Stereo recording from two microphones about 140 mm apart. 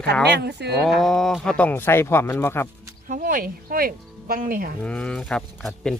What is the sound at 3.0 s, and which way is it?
Speech, 80° right.